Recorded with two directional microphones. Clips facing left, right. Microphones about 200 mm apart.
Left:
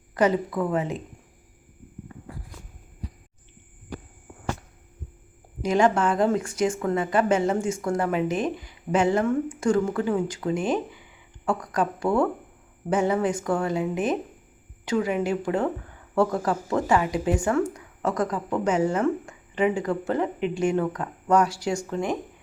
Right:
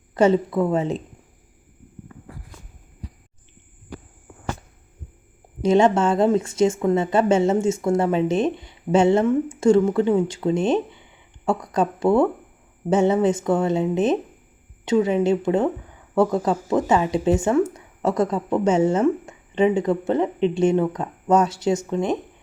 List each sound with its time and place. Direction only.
0.1 s speech: 25° right (ahead or behind)
5.6 s speech: 25° right (ahead or behind)